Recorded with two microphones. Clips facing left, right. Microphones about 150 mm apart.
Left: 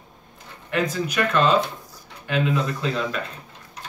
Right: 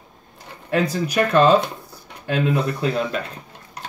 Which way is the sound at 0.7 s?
35° right (ahead or behind).